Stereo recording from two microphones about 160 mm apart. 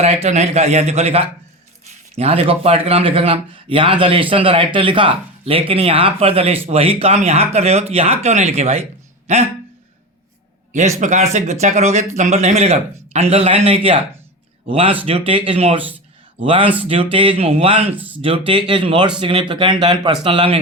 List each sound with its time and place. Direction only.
0.0 s a man's voice: 40° right (ahead or behind)
10.7 s a man's voice: 45° right (ahead or behind)
17.9 s speech: 10° right (ahead or behind)
18.2 s a man's voice: 35° right (ahead or behind)